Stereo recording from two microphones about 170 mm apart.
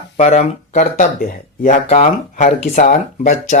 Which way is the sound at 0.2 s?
40° left (ahead or behind).